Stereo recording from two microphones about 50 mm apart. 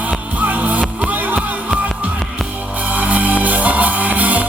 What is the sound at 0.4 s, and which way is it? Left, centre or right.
Music, right.